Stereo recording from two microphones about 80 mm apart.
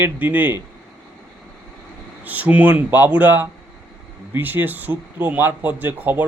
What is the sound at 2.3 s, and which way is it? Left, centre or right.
Speech, centre.